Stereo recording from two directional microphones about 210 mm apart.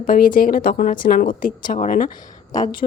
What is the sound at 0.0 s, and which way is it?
A woman's voice, 40° left (ahead or behind).